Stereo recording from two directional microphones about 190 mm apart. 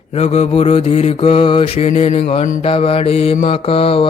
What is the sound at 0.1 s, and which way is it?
A man's voice, 35° left (ahead or behind).